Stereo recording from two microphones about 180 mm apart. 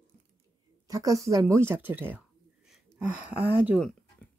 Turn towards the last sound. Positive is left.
turn(degrees=-10)  # may be behind; listen again after turning